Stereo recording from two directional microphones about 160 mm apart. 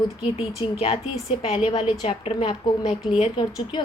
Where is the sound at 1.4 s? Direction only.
35° left (ahead or behind).